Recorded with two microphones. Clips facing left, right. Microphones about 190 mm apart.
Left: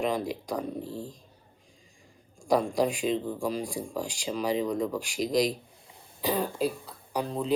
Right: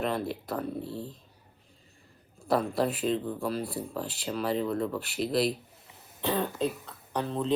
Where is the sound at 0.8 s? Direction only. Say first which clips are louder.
Even; 40° left (ahead or behind).